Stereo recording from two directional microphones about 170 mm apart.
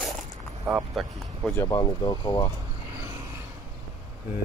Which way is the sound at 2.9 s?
20° right (ahead or behind).